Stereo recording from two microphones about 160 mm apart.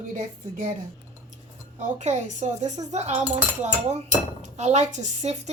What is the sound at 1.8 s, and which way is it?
Speech, 45° right (ahead or behind).